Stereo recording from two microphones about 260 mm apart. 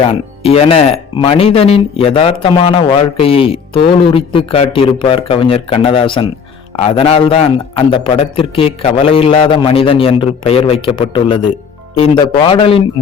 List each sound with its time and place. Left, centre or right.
0.0 s a man's voice: left